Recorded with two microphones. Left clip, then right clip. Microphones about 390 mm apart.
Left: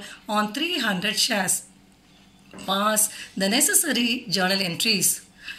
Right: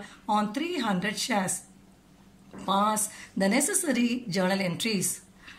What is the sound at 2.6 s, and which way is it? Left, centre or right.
A woman's voice, right.